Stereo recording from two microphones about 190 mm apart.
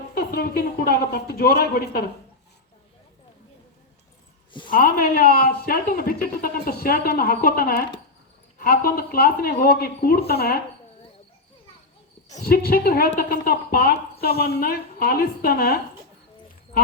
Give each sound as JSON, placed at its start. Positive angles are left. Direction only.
{"t": 0.1, "sound": "speech", "side_deg": 55}
{"t": 4.7, "sound": "a woman's voice", "side_deg": 50}
{"t": 12.5, "sound": "a woman's voice", "side_deg": 50}